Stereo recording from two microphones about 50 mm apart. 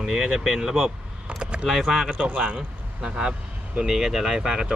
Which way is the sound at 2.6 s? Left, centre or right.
Centre.